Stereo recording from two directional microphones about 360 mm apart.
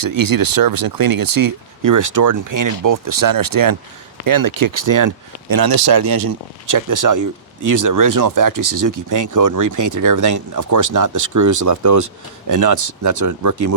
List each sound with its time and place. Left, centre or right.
0.0 s speech: right